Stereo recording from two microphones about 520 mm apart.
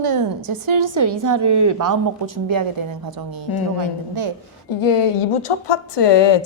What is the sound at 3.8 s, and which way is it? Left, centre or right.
Speech, right.